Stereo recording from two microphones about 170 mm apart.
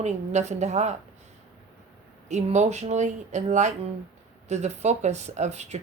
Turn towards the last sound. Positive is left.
turn(degrees=-40)  # may be behind; listen again after turning